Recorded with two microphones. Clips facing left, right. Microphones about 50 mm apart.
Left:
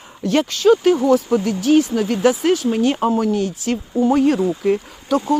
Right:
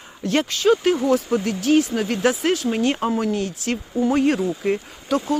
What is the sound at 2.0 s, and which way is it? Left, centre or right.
Speech, centre.